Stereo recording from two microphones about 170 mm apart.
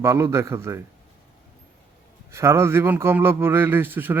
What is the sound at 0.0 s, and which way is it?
Speech, 15° right (ahead or behind).